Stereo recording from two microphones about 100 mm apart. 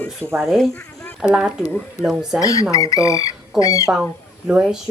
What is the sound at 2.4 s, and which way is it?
Speech, 35° left (ahead or behind).